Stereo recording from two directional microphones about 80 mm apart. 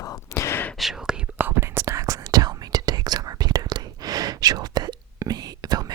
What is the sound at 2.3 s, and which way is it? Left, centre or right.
Whispering, right.